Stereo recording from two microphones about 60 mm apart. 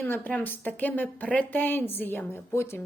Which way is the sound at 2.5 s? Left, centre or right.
Left.